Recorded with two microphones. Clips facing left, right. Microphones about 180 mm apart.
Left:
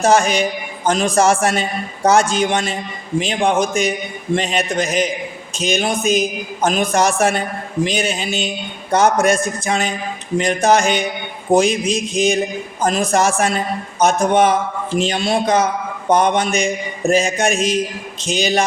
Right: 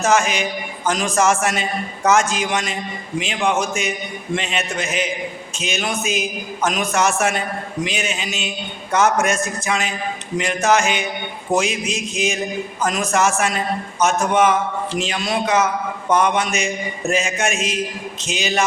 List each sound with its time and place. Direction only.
0.0 s a man's voice: 35° left (ahead or behind)